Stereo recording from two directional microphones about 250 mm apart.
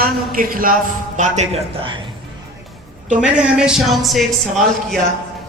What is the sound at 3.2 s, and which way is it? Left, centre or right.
Speech, centre.